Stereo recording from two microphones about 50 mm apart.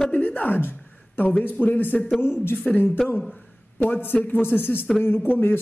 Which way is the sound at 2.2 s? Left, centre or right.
Left.